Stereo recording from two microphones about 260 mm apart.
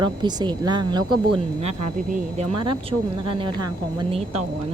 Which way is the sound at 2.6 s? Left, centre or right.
Centre.